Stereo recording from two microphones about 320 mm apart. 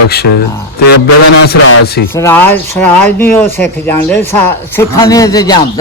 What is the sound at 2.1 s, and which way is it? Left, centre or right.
Speech, centre.